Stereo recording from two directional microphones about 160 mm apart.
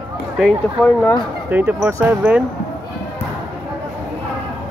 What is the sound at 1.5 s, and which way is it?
Speech, 10° right (ahead or behind).